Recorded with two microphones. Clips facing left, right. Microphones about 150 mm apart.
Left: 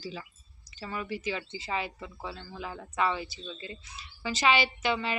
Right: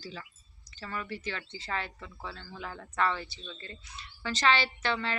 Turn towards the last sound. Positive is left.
turn(degrees=10)  # may be behind; listen again after turning